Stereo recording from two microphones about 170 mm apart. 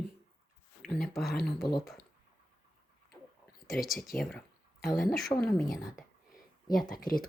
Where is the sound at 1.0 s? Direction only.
Centre (ahead or behind).